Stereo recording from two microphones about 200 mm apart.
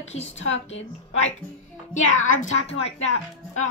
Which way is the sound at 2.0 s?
85° left.